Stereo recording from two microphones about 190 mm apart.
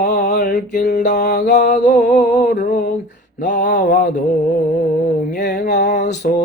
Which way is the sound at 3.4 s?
45° left (ahead or behind).